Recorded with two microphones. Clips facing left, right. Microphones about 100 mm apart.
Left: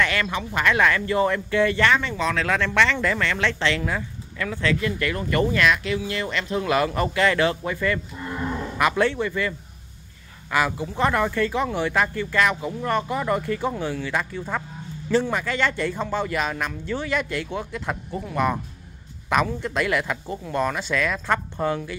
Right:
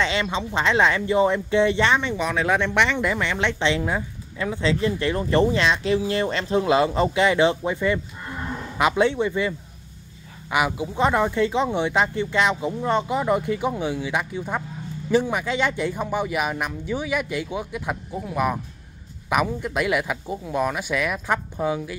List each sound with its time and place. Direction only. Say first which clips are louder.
0.0 s speech: even; 20° right (ahead or behind)